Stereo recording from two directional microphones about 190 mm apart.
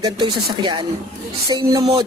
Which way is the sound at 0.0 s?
25° right (ahead or behind).